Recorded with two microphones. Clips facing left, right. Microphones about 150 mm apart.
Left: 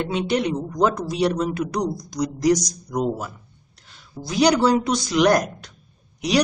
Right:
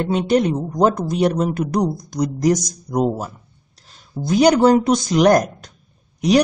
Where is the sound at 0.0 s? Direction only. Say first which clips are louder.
Right 5 dB; 45° right (ahead or behind).